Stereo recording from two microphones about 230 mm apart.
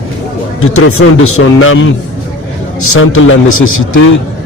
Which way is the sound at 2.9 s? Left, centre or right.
Left.